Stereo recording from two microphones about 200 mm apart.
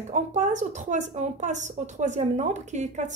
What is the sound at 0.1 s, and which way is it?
A woman's voice, 40° right (ahead or behind).